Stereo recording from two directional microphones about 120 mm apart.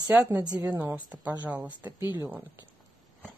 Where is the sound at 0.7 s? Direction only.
15° right (ahead or behind).